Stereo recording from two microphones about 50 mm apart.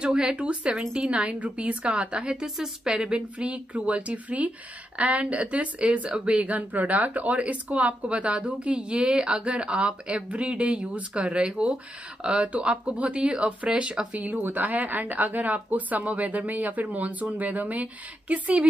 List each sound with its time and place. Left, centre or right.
0.0 s a woman's voice: centre
14.2 s a woman's voice: right